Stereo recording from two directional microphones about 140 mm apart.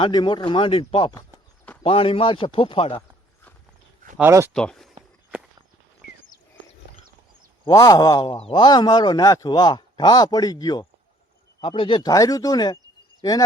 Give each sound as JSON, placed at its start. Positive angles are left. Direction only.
{"t": 0.0, "sound": "speech", "side_deg": 30}
{"t": 4.2, "sound": "speech", "side_deg": -15}
{"t": 4.5, "sound": "speech", "side_deg": 5}
{"t": 7.6, "sound": "speech", "side_deg": 30}
{"t": 11.6, "sound": "speech", "side_deg": 40}
{"t": 12.0, "sound": "speech", "side_deg": 25}